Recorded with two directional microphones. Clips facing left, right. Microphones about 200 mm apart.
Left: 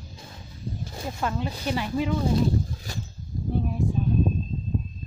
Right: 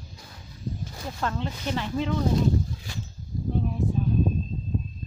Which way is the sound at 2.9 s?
40° left (ahead or behind).